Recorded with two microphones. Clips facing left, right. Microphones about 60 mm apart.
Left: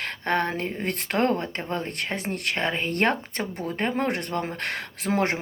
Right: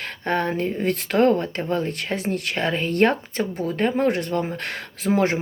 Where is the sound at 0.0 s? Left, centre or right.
Left.